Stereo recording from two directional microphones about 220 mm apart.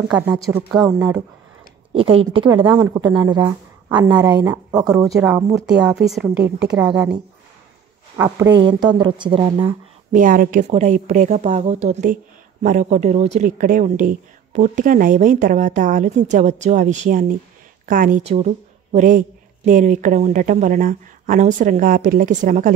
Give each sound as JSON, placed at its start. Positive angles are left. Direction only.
{"t": 0.1, "sound": "speech", "side_deg": -5}
{"t": 2.0, "sound": "a woman's voice", "side_deg": -25}
{"t": 8.5, "sound": "speech", "side_deg": -20}
{"t": 10.1, "sound": "a woman's voice", "side_deg": -40}